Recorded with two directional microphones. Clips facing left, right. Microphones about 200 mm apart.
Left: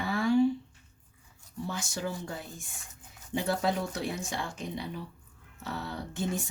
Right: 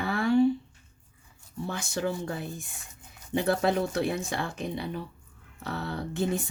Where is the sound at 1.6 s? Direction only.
60° right (ahead or behind).